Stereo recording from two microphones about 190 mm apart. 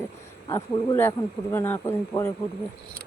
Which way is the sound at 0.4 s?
20° left (ahead or behind).